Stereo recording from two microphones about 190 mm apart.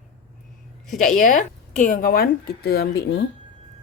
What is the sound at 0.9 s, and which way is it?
A woman's voice, 45° left (ahead or behind).